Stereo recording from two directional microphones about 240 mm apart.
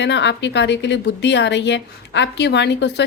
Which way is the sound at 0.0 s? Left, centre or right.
Left.